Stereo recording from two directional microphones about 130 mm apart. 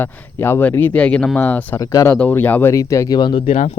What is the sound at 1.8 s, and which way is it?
Speech, 25° left (ahead or behind).